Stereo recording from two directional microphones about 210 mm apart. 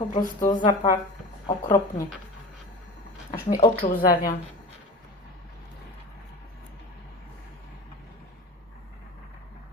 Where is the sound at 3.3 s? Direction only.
40° left (ahead or behind).